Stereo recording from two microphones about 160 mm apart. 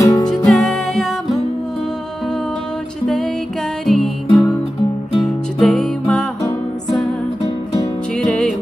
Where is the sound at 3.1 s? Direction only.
Centre (ahead or behind).